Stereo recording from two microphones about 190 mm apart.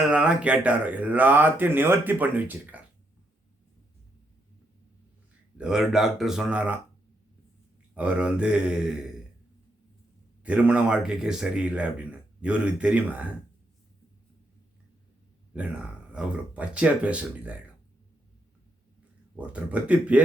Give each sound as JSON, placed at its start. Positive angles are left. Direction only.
{"t": 0.1, "sound": "speech", "side_deg": -5}
{"t": 5.5, "sound": "speech", "side_deg": -5}
{"t": 7.9, "sound": "speech", "side_deg": -5}
{"t": 10.4, "sound": "speech", "side_deg": -5}
{"t": 15.5, "sound": "speech", "side_deg": -5}
{"t": 19.4, "sound": "speech", "side_deg": -5}